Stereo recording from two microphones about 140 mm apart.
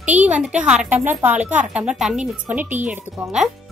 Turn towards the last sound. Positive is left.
turn(degrees=-10)  # may be behind; listen again after turning